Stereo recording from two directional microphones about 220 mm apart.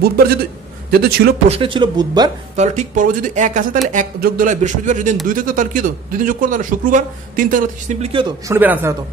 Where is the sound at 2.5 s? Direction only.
30° right (ahead or behind).